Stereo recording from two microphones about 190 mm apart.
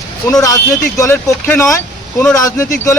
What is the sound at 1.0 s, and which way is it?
Speech, 15° left (ahead or behind).